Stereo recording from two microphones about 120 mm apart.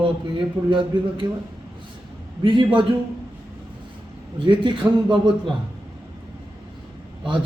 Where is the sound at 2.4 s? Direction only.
45° right (ahead or behind).